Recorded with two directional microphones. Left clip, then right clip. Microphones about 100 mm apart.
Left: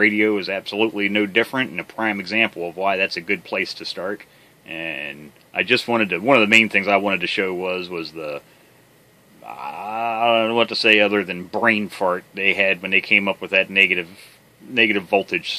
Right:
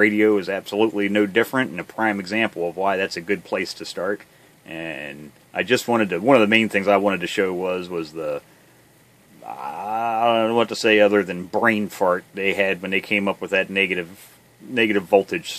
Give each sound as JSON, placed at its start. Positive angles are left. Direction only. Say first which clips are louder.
{"t": 0.0, "sound": "speech", "louder": "even", "side_deg": -40}
{"t": 4.6, "sound": "speech", "louder": "left 3 dB", "side_deg": -35}
{"t": 9.5, "sound": "speech", "louder": "right 1 dB", "side_deg": -35}